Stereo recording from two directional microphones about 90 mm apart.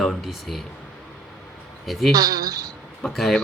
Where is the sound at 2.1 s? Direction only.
45° right (ahead or behind).